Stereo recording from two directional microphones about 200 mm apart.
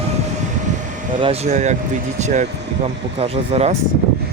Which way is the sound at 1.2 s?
30° right (ahead or behind).